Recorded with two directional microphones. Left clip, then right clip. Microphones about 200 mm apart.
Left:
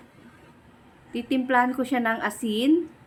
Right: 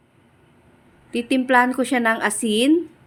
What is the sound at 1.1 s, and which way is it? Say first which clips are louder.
A woman's voice: right 5 dB; 20° right (ahead or behind).